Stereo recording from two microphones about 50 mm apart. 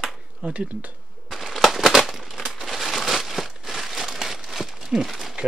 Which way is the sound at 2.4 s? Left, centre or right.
Centre.